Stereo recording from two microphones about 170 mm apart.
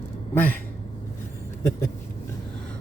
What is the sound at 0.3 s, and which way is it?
Speech, 10° left (ahead or behind).